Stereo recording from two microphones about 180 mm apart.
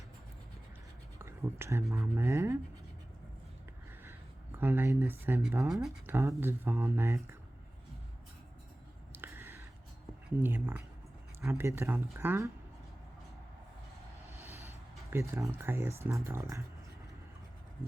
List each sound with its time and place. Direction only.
1.2 s writing: 15° right (ahead or behind)
1.9 s speech: 15° right (ahead or behind)
4.0 s a sound: 10° right (ahead or behind)
6.1 s speech: 10° right (ahead or behind)
9.1 s a sound: 10° right (ahead or behind)
10.2 s speech: 10° right (ahead or behind)
15.1 s speech: 15° right (ahead or behind)